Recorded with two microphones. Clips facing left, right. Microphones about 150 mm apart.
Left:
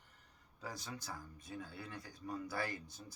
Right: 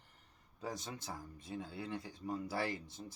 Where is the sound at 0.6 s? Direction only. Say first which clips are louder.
Right 3 dB; 25° right (ahead or behind).